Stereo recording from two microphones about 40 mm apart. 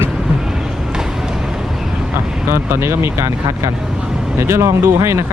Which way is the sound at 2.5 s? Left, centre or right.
Right.